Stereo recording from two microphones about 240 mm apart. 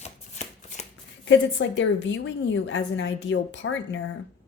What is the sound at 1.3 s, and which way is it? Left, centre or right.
A woman's voice, left.